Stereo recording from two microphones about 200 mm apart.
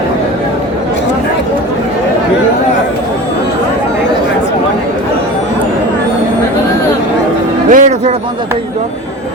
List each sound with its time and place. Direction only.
7.7 s music: 40° right (ahead or behind)